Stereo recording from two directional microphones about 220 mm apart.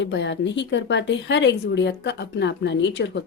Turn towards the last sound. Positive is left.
turn(degrees=50)  # may be behind; listen again after turning